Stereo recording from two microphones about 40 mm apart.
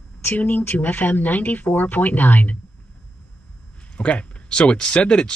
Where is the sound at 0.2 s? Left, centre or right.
Left.